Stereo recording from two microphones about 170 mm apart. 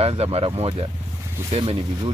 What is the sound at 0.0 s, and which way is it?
Speech, 35° right (ahead or behind).